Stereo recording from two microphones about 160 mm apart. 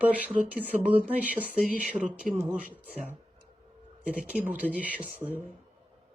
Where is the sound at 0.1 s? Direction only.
10° right (ahead or behind).